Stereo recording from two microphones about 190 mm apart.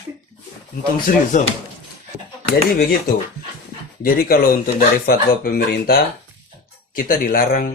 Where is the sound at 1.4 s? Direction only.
40° left (ahead or behind).